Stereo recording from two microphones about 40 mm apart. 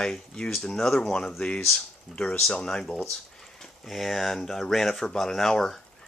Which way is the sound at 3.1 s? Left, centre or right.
Centre.